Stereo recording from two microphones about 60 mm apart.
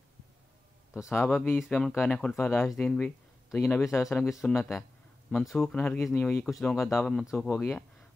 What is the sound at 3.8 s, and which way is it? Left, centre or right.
Speech, left.